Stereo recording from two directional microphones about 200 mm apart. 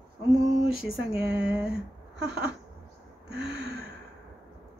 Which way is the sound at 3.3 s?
55° right (ahead or behind).